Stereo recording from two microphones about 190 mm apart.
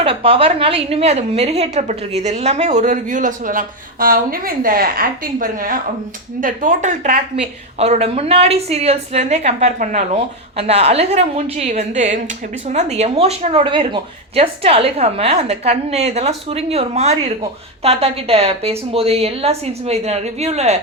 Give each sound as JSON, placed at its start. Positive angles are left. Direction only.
{"t": 0.0, "sound": "a woman's voice", "side_deg": -30}